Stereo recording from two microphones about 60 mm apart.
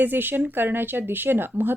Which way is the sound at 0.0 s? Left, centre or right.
Right.